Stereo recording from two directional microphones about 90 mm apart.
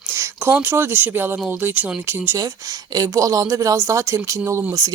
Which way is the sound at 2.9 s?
40° right (ahead or behind).